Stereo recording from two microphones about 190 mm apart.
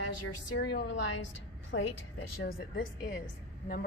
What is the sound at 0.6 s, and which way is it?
Speech, 65° left (ahead or behind).